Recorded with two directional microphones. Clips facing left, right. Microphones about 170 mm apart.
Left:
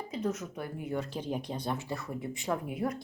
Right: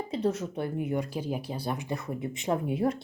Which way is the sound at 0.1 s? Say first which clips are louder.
Right 4 dB; 30° right (ahead or behind).